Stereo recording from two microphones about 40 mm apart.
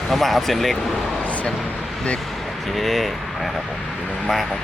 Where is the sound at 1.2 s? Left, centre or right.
Left.